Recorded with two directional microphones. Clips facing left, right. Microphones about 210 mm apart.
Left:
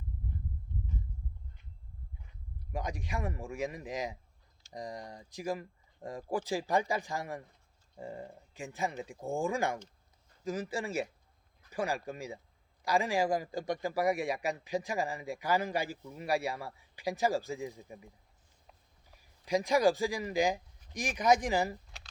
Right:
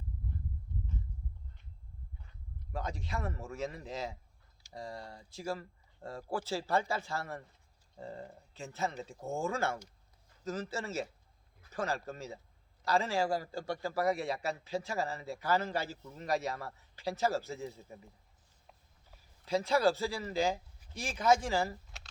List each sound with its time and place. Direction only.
2.7 s a man's voice: 15° left (ahead or behind)